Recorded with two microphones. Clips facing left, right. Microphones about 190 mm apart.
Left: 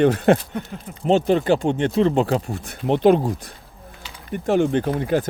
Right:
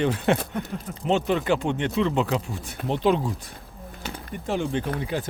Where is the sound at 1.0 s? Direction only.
35° left (ahead or behind); by 3.2 s 55° left (ahead or behind).